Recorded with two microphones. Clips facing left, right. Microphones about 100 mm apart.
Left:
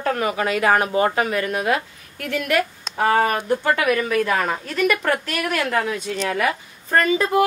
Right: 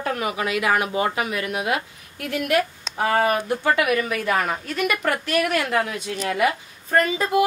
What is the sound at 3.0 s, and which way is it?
Speech, 40° left (ahead or behind).